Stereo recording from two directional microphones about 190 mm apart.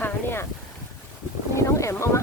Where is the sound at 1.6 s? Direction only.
15° left (ahead or behind).